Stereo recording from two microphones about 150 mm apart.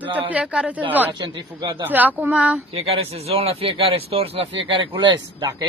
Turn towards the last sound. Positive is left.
turn(degrees=-30)  # may be behind; listen again after turning